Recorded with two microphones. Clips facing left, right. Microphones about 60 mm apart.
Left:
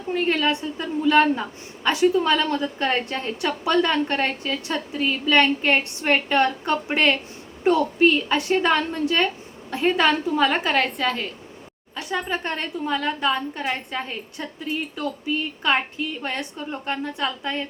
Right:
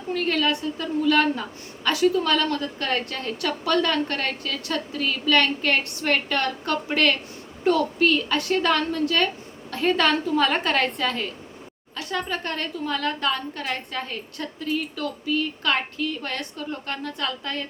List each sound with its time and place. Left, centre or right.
0.1 s a woman's voice: left; by 11.3 s centre
11.9 s a woman's voice: centre